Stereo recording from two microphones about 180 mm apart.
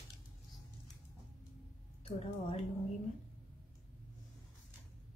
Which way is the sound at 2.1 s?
35° left (ahead or behind).